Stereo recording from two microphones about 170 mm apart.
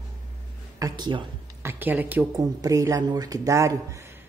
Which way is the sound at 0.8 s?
25° right (ahead or behind).